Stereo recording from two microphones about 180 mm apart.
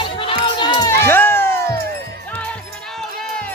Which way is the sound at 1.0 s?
10° left (ahead or behind).